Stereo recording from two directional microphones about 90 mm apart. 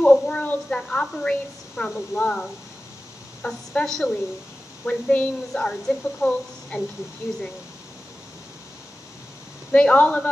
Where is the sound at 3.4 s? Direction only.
5° left (ahead or behind).